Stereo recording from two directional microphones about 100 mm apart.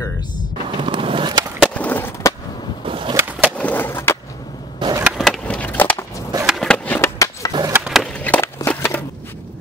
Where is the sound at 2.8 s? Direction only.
60° right (ahead or behind).